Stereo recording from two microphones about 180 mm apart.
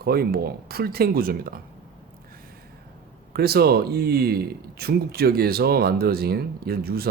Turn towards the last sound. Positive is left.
turn(degrees=-60)  # may be behind; listen again after turning